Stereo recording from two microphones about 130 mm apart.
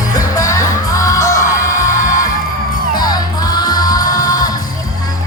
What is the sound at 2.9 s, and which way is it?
Music, 30° left (ahead or behind).